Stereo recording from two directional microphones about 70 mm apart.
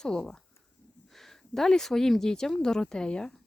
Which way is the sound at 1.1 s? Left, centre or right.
Centre.